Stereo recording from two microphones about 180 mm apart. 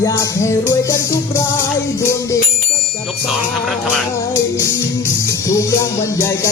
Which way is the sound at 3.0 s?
Centre (ahead or behind).